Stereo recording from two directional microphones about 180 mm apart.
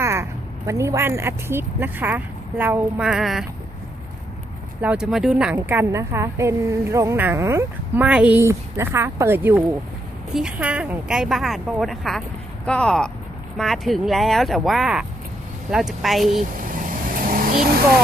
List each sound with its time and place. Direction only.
0.0 s a sound: 15° right (ahead or behind)
0.7 s a woman's voice: 15° right (ahead or behind)
4.8 s a woman's voice: 5° right (ahead or behind)
16.4 s vehicle: 50° right (ahead or behind)